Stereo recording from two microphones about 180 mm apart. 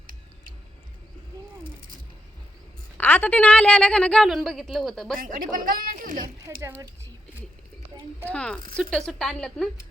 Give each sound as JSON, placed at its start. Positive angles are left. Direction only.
{"t": 3.0, "sound": "a woman's voice", "side_deg": 10}
{"t": 5.2, "sound": "speech", "side_deg": -50}
{"t": 6.6, "sound": "speech", "side_deg": -15}
{"t": 8.3, "sound": "a woman's voice", "side_deg": 5}